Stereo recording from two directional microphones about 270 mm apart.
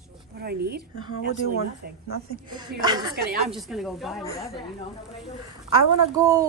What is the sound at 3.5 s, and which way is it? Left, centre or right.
Speech, centre.